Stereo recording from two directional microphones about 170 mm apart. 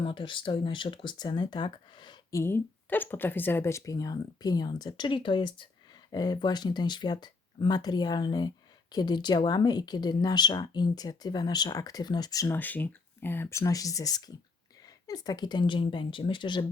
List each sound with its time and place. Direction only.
0.0 s speech: 30° left (ahead or behind)
2.4 s speech: 10° left (ahead or behind); by 16.6 s 25° left (ahead or behind)